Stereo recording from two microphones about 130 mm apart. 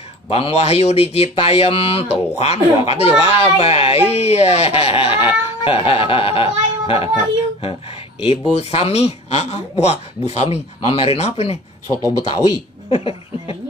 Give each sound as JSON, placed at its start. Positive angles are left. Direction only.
{"t": 0.3, "sound": "speech", "side_deg": 50}
{"t": 8.2, "sound": "speech", "side_deg": 50}
{"t": 11.9, "sound": "speech", "side_deg": 25}
{"t": 12.9, "sound": "speech", "side_deg": 45}